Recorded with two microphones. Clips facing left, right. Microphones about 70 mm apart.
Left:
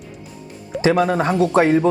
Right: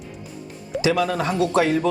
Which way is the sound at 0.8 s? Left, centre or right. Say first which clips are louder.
Left 4 dB; left.